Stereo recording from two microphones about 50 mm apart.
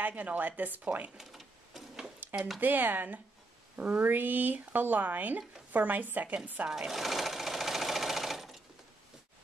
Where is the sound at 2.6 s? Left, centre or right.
Right.